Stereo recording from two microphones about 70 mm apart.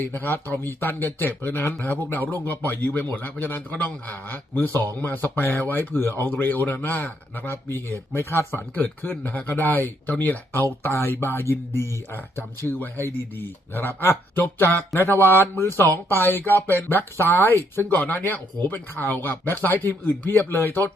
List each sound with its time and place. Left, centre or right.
0.0 s speech: left
17.8 s speech: left